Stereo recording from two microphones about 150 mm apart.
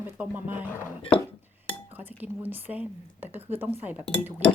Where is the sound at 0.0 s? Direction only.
10° right (ahead or behind).